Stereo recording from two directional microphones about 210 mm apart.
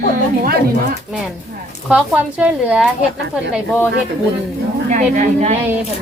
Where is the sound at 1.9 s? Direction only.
5° right (ahead or behind).